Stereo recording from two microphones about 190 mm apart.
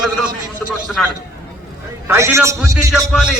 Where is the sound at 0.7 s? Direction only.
5° right (ahead or behind).